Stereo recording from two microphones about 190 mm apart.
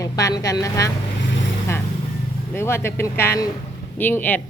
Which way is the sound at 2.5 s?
15° left (ahead or behind).